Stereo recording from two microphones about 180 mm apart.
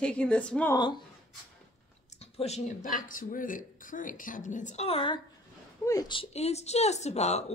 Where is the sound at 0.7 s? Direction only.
25° left (ahead or behind).